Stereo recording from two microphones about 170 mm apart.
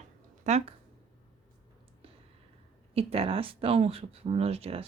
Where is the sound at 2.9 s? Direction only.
35° right (ahead or behind).